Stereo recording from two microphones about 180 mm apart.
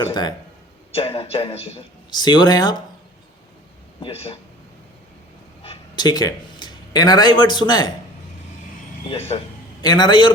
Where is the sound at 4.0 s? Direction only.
30° left (ahead or behind).